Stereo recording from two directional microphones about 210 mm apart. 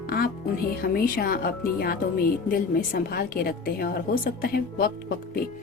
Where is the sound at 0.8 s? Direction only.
45° left (ahead or behind).